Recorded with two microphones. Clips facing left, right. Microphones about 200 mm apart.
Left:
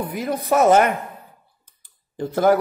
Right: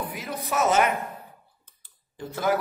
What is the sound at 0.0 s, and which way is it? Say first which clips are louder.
Speech: left 8 dB; 50° left (ahead or behind).